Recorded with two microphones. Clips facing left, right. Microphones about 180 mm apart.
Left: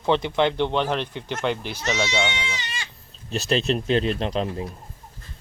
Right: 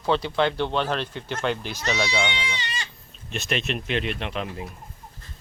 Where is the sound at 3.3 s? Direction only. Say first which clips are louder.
Left 5 dB; 35° left (ahead or behind).